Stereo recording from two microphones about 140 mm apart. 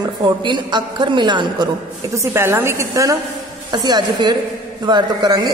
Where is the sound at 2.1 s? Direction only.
15° right (ahead or behind).